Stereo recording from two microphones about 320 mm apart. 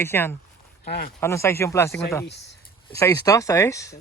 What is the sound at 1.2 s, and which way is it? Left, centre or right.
Speech, centre.